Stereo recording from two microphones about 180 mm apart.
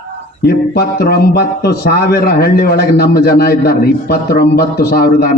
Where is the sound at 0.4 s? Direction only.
60° left (ahead or behind).